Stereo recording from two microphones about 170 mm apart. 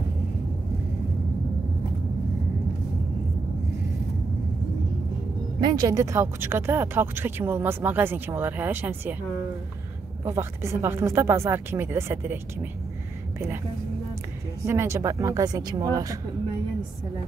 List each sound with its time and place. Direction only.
5.6 s speech: 25° right (ahead or behind)
10.2 s speech: 15° right (ahead or behind)
14.7 s speech: 15° right (ahead or behind)